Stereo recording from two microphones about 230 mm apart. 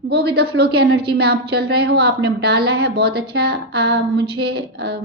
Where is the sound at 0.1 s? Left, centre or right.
Right.